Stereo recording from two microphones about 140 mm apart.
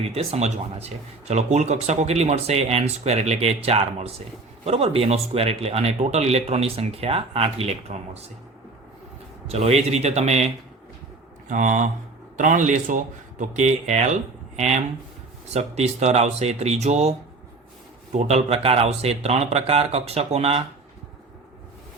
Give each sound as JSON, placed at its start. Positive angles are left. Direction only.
{"t": 0.1, "sound": "speech", "side_deg": -45}
{"t": 9.5, "sound": "speech", "side_deg": -50}
{"t": 11.4, "sound": "speech", "side_deg": -65}